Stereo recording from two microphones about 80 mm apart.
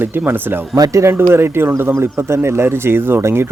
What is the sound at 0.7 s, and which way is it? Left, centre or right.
Speech, right.